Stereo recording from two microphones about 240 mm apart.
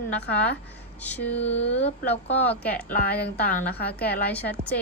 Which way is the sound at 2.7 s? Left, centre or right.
Left.